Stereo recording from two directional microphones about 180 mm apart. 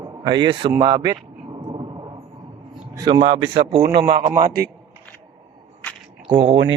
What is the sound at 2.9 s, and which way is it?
Speech, 25° right (ahead or behind).